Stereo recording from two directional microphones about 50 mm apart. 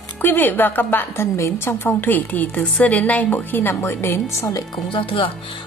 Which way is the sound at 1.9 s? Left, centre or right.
Left.